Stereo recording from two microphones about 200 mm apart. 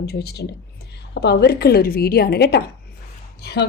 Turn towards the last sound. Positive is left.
turn(degrees=55)  # may be behind; listen again after turning